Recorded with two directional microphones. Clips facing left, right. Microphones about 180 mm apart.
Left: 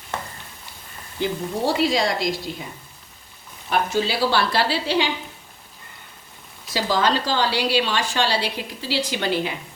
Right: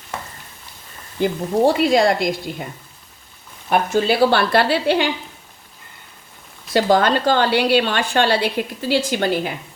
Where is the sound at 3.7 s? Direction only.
50° right (ahead or behind).